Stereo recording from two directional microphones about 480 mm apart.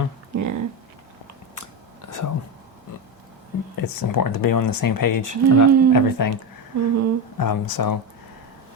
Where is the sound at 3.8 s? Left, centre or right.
Left.